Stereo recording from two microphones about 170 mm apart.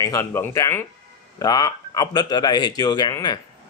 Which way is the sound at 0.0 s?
15° left (ahead or behind).